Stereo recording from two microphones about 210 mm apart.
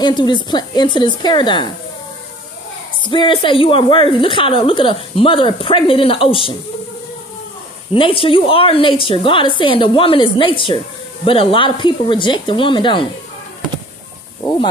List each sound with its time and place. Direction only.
0.0 s a woman's voice: 20° left (ahead or behind)
3.0 s a woman's voice: 25° left (ahead or behind)
7.9 s a woman's voice: 25° left (ahead or behind)